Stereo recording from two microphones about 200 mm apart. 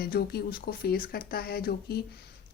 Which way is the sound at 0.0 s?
50° left (ahead or behind).